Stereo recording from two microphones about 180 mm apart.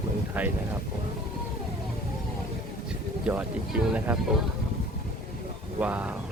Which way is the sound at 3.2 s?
5° right (ahead or behind).